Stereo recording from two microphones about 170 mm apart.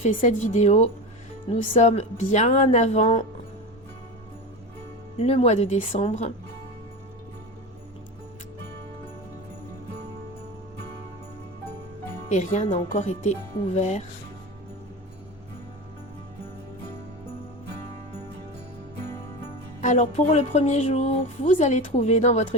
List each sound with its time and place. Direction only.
0.0 s speech: 50° left (ahead or behind)
5.1 s speech: 40° left (ahead or behind)
12.3 s speech: 45° left (ahead or behind)
19.8 s speech: 50° left (ahead or behind)